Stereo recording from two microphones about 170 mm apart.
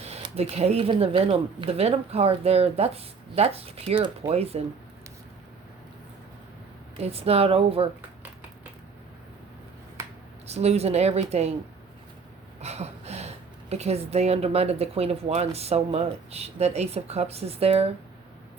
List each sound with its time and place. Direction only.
0.0 s speech: 40° right (ahead or behind)
6.9 s speech: 35° right (ahead or behind)
10.4 s speech: 40° right (ahead or behind)
12.5 s speech: 40° right (ahead or behind)